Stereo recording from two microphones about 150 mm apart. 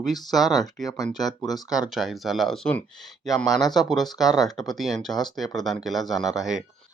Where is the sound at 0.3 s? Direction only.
Centre (ahead or behind).